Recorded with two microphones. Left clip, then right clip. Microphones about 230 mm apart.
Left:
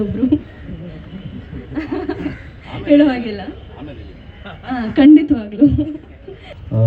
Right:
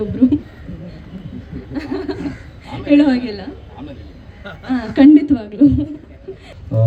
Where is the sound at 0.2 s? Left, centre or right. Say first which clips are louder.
Right 2 dB; right.